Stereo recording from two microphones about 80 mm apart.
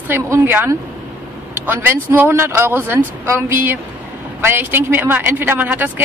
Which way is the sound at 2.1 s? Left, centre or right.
Right.